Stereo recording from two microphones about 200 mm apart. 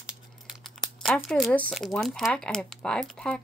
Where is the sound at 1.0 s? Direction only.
Centre (ahead or behind).